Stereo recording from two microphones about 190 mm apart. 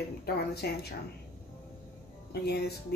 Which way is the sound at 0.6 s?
60° left (ahead or behind).